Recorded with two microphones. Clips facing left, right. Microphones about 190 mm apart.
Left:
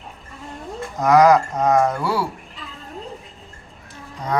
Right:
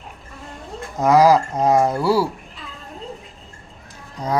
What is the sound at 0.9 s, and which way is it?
Speech, 30° right (ahead or behind).